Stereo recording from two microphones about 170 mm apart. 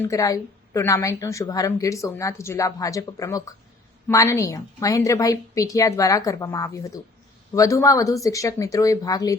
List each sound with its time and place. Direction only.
0.0 s a woman's voice: 20° left (ahead or behind)